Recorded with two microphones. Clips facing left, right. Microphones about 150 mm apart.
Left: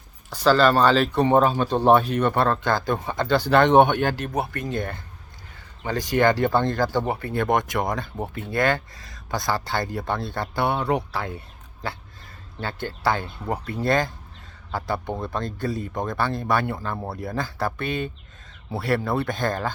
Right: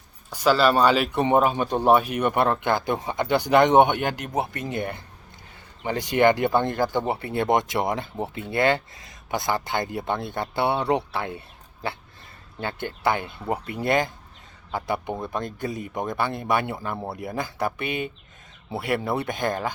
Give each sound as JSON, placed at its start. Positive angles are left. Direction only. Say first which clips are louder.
{"t": 0.3, "sound": "speech", "louder": "left 2 dB", "side_deg": -10}